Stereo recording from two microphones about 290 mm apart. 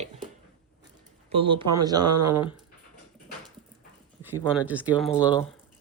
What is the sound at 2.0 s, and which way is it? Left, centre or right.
Speech, right.